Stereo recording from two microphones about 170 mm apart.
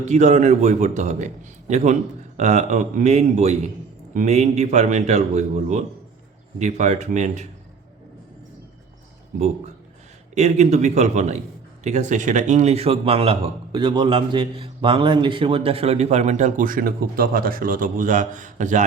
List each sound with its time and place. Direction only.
0.0 s a man's voice: 45° right (ahead or behind)
10.3 s a man's voice: 40° right (ahead or behind)